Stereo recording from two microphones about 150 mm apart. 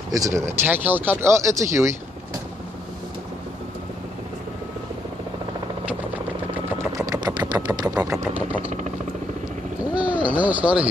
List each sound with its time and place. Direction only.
0.1 s speech: 20° right (ahead or behind)
7.0 s a sound: 25° right (ahead or behind)
8.0 s speech: 20° right (ahead or behind)
10.1 s speech: 10° right (ahead or behind)